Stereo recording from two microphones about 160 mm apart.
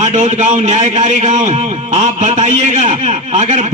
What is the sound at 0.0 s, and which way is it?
A man's voice, 45° right (ahead or behind).